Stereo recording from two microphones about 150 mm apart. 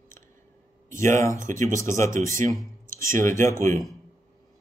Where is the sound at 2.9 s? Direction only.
20° left (ahead or behind).